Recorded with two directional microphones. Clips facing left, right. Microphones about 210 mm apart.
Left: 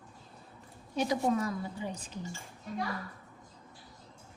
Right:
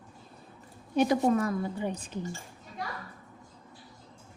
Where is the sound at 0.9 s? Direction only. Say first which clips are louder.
Right 5 dB; 55° right (ahead or behind).